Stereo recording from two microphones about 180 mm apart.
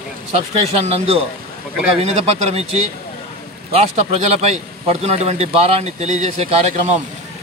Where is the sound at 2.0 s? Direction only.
35° right (ahead or behind).